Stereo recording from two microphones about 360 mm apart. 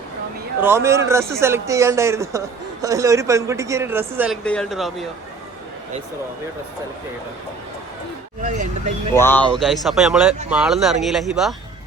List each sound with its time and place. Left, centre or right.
0.6 s speech: centre
8.4 s speech: right
9.1 s speech: centre